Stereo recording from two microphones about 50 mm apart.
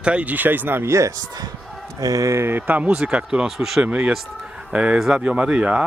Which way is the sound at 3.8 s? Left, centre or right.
Right.